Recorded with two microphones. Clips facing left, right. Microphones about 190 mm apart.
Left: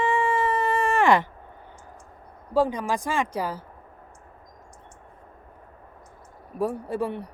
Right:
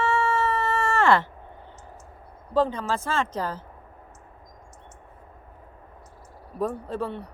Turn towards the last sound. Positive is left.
turn(degrees=10)  # may be behind; listen again after turning